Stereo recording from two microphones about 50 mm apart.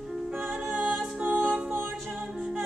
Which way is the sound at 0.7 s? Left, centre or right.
Centre.